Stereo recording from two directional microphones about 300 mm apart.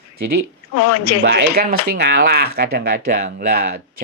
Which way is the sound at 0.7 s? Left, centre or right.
Left.